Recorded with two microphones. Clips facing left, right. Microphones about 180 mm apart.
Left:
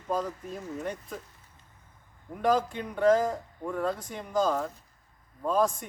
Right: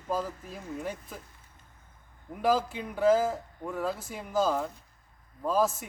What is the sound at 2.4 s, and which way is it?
Speech, 5° right (ahead or behind).